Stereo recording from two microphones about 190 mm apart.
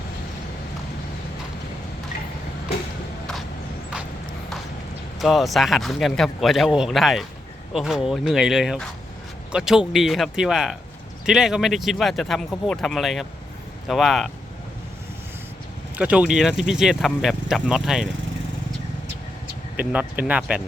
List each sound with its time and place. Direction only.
5.2 s speech: centre (ahead or behind)
16.0 s speech: 5° right (ahead or behind)
19.7 s speech: 10° right (ahead or behind)